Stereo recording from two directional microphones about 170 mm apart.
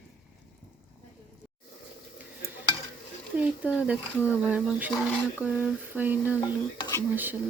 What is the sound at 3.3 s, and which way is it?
Speech, 10° right (ahead or behind).